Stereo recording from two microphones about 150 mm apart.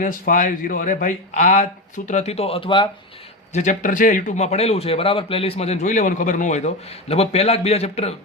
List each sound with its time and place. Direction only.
0.0 s speech: 60° left (ahead or behind); by 2.9 s 35° left (ahead or behind)
3.5 s a man's voice: 55° left (ahead or behind)